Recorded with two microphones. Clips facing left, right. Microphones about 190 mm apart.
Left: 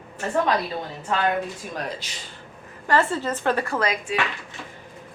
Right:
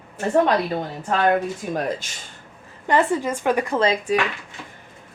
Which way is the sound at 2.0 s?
50° right (ahead or behind).